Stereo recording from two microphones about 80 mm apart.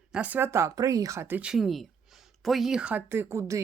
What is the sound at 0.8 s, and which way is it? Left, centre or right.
Speech, right.